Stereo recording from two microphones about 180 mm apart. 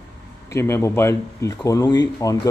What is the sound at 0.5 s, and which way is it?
Speech, 15° left (ahead or behind).